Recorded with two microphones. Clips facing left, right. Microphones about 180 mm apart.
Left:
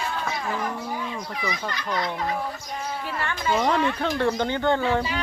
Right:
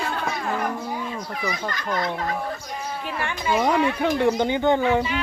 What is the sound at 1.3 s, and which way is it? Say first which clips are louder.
Speech: right 2 dB; 45° right (ahead or behind).